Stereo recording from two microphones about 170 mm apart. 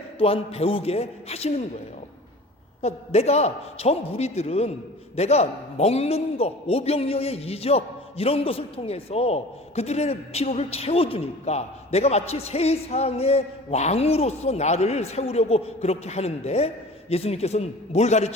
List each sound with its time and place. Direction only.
0.2 s a man's voice: 35° left (ahead or behind)
2.8 s a man's voice: 40° left (ahead or behind)